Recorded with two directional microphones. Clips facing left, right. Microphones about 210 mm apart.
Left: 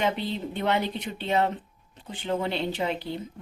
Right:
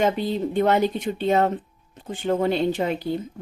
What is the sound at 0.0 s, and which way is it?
Speech, 45° right (ahead or behind).